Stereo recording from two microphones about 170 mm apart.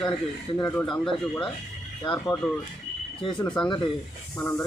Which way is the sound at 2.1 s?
20° left (ahead or behind).